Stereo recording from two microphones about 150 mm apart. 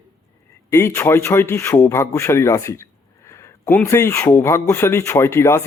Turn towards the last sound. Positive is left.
turn(degrees=15)  # may be behind; listen again after turning